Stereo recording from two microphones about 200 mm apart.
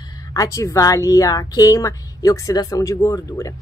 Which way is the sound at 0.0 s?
20° left (ahead or behind).